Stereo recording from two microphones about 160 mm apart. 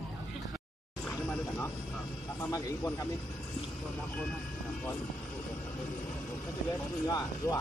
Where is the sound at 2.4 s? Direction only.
20° left (ahead or behind).